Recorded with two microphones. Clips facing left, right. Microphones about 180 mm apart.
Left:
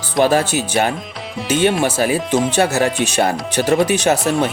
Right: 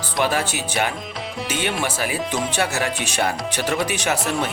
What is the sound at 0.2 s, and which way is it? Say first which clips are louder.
Speech: left 8 dB; 40° left (ahead or behind).